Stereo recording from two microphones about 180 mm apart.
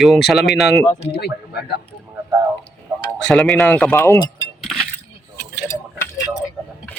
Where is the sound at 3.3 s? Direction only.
Centre (ahead or behind).